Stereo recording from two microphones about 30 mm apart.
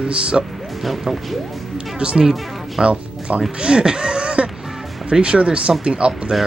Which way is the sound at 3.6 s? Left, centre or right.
Right.